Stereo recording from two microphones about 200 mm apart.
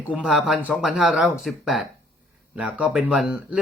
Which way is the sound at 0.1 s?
5° right (ahead or behind).